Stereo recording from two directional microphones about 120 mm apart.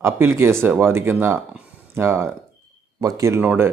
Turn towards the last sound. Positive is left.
turn(degrees=-15)  # may be behind; listen again after turning